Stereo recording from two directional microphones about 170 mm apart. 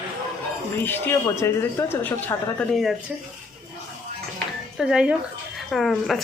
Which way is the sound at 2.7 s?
Centre (ahead or behind).